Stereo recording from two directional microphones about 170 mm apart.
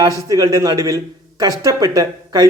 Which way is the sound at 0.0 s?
20° right (ahead or behind).